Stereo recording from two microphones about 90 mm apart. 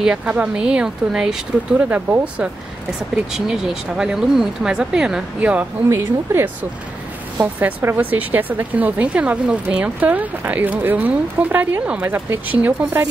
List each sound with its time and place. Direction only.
0.0 s speech: 10° right (ahead or behind)
3.3 s speech: 5° right (ahead or behind)
5.9 s a woman's voice: 25° right (ahead or behind)
7.8 s a woman's voice: 20° right (ahead or behind)